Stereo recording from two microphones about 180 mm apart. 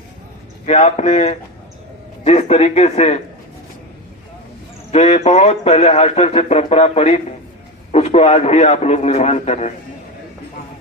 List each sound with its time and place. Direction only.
0.6 s speech: 40° left (ahead or behind)
4.9 s speech: 35° left (ahead or behind)